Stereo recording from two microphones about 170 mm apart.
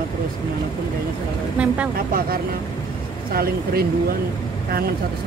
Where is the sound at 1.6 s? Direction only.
5° right (ahead or behind).